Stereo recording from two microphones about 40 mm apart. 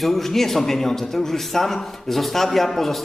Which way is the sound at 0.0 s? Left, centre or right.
Centre.